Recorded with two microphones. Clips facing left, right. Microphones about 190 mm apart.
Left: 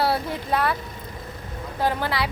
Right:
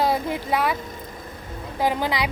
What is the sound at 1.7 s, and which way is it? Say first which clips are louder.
Speech: right 1 dB; 15° right (ahead or behind).